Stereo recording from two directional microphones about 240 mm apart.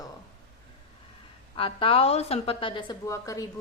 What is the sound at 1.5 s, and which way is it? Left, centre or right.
A woman's voice, left.